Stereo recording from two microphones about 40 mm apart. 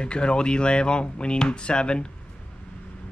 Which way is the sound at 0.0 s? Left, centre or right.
Left.